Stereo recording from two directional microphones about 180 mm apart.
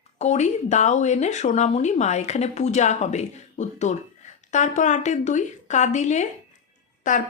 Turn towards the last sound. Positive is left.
turn(degrees=45)  # may be behind; listen again after turning